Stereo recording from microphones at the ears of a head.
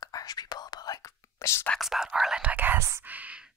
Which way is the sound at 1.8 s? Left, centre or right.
Centre.